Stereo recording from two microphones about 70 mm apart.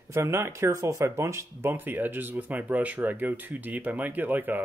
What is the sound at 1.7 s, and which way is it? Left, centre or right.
Speech, right.